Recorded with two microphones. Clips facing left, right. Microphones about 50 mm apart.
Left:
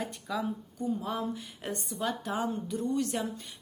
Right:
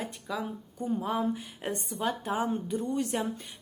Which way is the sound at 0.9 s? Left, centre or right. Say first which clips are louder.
Right 4 dB; right.